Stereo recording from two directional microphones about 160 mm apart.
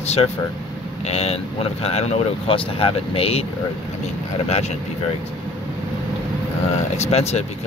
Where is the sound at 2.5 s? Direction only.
35° left (ahead or behind).